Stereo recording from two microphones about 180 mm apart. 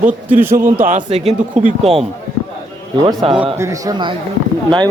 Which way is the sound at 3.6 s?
20° right (ahead or behind).